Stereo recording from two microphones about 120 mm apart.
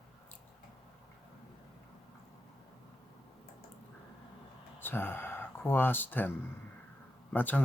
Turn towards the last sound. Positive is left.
turn(degrees=15)  # may be behind; listen again after turning